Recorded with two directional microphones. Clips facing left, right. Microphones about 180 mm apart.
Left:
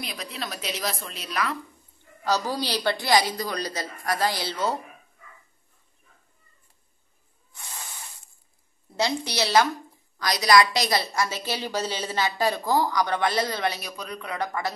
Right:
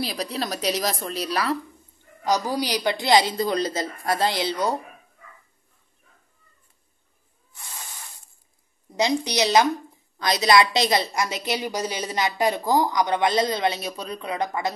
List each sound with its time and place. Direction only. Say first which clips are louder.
0.0 s a woman's voice: right 7 dB; 35° right (ahead or behind)
2.2 s a woman's voice: right 2 dB; 15° right (ahead or behind)
8.9 s a woman's voice: right 4 dB; 15° right (ahead or behind)